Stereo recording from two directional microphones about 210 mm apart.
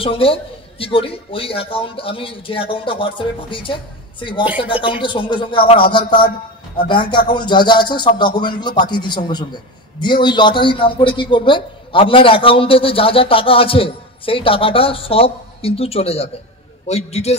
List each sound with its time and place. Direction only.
0.0 s a man's voice: 25° left (ahead or behind)